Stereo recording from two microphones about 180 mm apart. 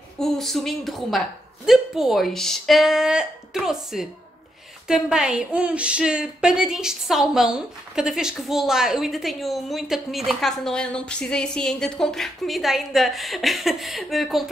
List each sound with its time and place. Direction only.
0.2 s speech: centre (ahead or behind)